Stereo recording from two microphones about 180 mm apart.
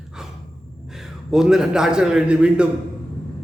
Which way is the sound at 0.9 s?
Centre (ahead or behind).